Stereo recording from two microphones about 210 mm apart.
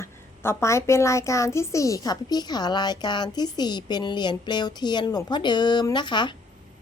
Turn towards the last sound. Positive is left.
turn(degrees=20)  # may be behind; listen again after turning